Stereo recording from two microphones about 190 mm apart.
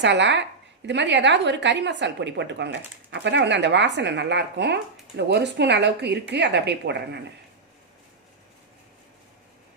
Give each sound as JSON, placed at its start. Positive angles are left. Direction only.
{"t": 0.0, "sound": "a woman's voice", "side_deg": -70}